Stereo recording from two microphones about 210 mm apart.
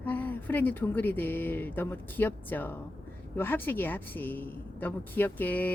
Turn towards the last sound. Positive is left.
turn(degrees=10)  # may be behind; listen again after turning